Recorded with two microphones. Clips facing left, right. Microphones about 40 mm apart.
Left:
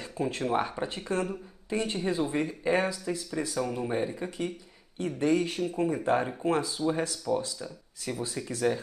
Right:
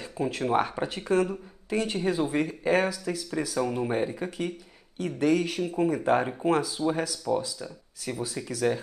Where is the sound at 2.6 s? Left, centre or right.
Centre.